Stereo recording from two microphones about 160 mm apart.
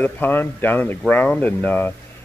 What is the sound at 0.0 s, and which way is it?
A man's voice, 10° left (ahead or behind).